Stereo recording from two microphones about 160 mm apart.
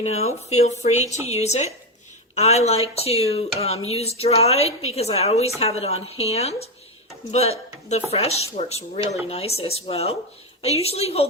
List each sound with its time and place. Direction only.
0.0 s speech: 40° left (ahead or behind)